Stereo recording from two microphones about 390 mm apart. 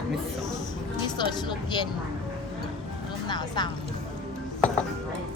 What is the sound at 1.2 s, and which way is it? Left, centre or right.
Speech, centre.